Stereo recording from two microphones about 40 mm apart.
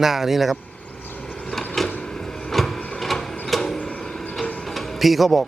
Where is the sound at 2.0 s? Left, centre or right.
Centre.